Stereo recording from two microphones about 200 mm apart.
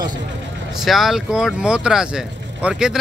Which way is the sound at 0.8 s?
Centre (ahead or behind).